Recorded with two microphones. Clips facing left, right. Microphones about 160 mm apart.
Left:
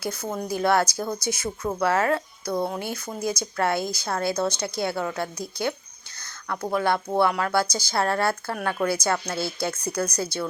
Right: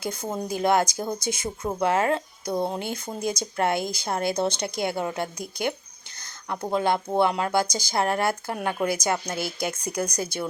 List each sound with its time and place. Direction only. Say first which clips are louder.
0.0 s speech: even; 20° right (ahead or behind)